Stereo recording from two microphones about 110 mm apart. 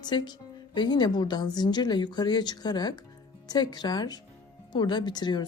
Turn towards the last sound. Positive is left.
turn(degrees=40)  # may be behind; listen again after turning